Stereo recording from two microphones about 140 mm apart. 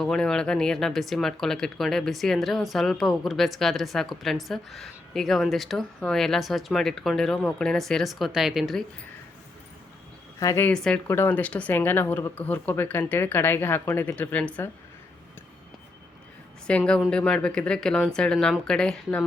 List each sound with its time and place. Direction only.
0.0 s speech: 5° left (ahead or behind)
10.4 s speech: 20° left (ahead or behind)
10.7 s speech: 5° left (ahead or behind)
16.6 s speech: 5° left (ahead or behind)